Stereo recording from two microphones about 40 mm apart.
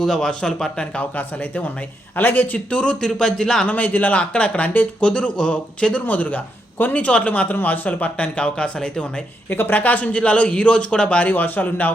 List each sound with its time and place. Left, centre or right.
0.0 s a man's voice: centre
1.1 s a man's voice: left
2.6 s a man's voice: left
2.9 s a man's voice: centre
3.7 s a man's voice: left
4.2 s a man's voice: left
5.9 s speech: left
7.0 s speech: left
7.5 s speech: left
9.5 s speech: left
9.8 s speech: left
11.2 s a man's voice: left